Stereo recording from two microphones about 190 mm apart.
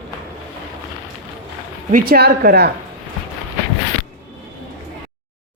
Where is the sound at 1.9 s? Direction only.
50° right (ahead or behind).